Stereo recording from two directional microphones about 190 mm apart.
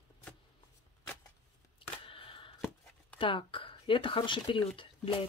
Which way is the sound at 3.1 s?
25° left (ahead or behind).